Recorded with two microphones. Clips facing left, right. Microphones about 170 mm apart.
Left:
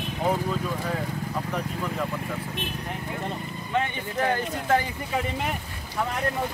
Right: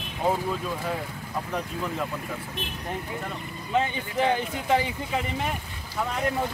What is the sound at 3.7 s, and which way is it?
Speech, 15° right (ahead or behind).